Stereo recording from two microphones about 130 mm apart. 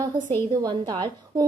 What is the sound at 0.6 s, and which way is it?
Speech, 30° right (ahead or behind).